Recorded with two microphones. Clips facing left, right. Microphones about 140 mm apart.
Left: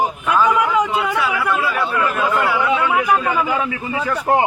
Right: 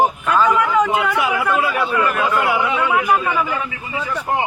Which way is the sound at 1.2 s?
15° right (ahead or behind).